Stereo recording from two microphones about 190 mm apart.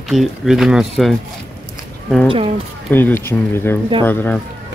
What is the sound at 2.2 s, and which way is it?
Speech, 30° right (ahead or behind).